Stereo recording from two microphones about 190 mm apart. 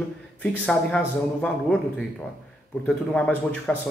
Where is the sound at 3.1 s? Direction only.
5° left (ahead or behind).